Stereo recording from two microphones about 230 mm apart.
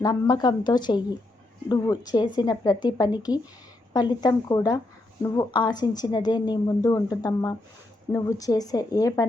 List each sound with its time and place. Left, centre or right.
0.0 s a woman's voice: centre